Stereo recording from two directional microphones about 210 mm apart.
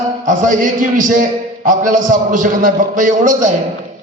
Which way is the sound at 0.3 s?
40° right (ahead or behind).